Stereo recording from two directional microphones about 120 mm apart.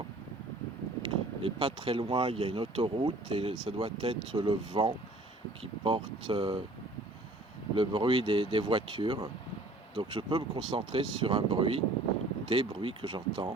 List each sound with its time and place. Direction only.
1.0 s speech: 50° right (ahead or behind)
7.8 s speech: 45° right (ahead or behind)